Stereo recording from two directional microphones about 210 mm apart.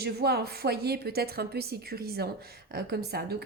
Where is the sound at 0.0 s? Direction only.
50° right (ahead or behind).